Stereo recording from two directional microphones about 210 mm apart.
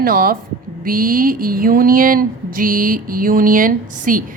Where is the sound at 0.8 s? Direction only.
40° right (ahead or behind).